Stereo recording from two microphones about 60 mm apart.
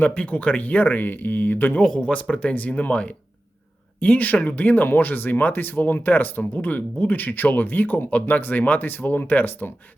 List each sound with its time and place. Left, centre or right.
0.0 s speech: left
1.8 s speech: centre